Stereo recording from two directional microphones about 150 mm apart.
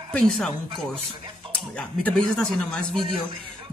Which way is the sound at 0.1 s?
5° left (ahead or behind).